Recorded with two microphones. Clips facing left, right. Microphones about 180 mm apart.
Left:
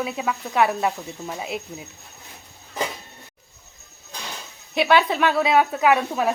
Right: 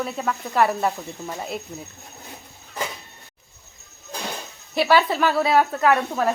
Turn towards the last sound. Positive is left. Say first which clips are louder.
# even
turn(degrees=5)  # may be behind; listen again after turning